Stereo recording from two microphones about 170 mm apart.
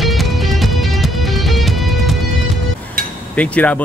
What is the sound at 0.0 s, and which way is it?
Music, centre (ahead or behind).